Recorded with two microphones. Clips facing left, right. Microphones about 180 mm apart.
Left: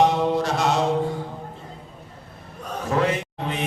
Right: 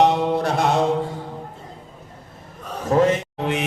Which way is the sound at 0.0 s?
55° right (ahead or behind).